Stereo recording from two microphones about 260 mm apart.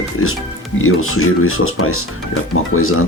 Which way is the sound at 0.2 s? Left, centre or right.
Left.